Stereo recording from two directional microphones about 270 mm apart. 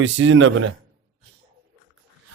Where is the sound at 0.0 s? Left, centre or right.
Right.